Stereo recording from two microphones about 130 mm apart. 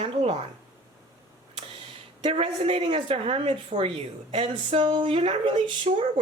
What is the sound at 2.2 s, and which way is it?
A woman's voice, 45° right (ahead or behind).